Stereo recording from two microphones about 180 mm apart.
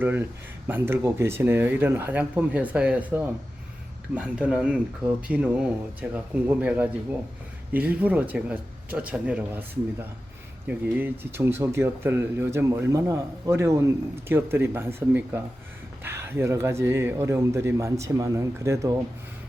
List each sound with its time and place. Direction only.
0.0 s speech: 10° right (ahead or behind)